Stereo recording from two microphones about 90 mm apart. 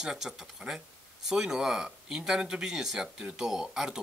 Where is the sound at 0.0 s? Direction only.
5° right (ahead or behind).